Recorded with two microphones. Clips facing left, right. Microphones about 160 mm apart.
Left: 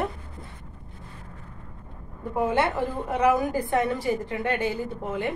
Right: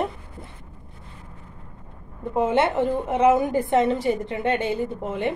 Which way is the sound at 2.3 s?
20° right (ahead or behind).